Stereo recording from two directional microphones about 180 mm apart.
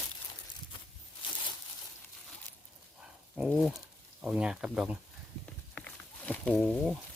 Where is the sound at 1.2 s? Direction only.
25° left (ahead or behind).